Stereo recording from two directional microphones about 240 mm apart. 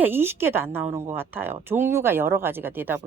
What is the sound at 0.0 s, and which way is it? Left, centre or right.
A woman's voice, centre.